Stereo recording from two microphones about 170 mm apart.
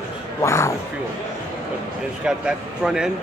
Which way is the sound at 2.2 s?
5° right (ahead or behind).